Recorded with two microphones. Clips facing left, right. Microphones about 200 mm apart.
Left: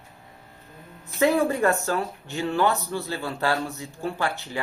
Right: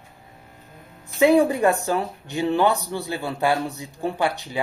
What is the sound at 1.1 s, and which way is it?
Speech, 15° right (ahead or behind).